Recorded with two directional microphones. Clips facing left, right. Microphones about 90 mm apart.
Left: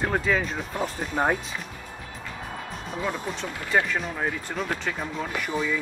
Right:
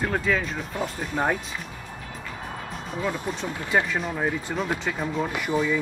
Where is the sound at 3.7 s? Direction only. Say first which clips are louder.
Even; 15° right (ahead or behind).